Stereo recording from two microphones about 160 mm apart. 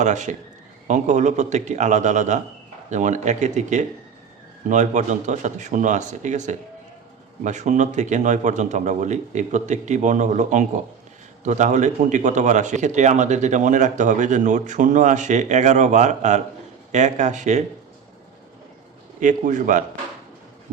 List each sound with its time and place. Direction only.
0.0 s speech: 45° right (ahead or behind)
19.2 s speech: 50° right (ahead or behind)